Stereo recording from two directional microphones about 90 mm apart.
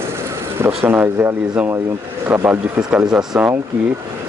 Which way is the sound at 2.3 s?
15° right (ahead or behind).